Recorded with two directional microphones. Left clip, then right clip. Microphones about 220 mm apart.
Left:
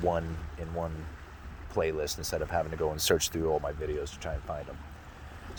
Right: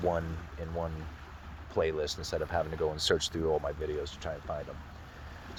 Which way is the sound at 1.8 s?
30° left (ahead or behind).